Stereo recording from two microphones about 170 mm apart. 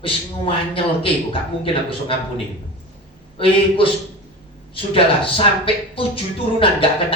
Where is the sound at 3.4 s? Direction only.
30° left (ahead or behind).